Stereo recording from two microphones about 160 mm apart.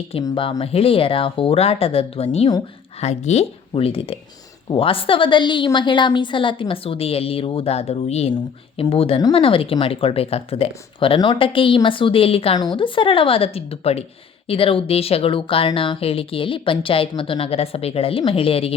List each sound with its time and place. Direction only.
0.2 s speech: 30° left (ahead or behind)